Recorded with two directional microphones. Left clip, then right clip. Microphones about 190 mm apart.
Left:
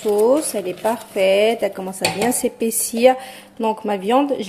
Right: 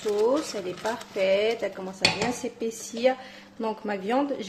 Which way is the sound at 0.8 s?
20° left (ahead or behind).